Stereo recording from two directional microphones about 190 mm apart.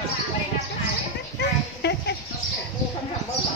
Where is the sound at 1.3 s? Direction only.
60° left (ahead or behind).